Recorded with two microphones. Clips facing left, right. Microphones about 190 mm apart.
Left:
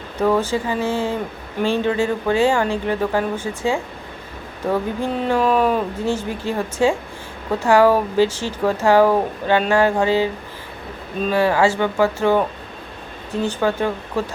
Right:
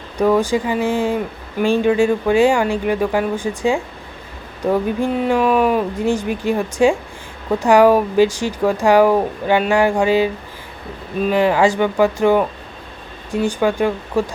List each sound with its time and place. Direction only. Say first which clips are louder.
0.2 s speech: right 3 dB; 15° right (ahead or behind)
4.9 s speech: right 3 dB; 10° right (ahead or behind)
11.3 s speech: right 2 dB; 15° right (ahead or behind)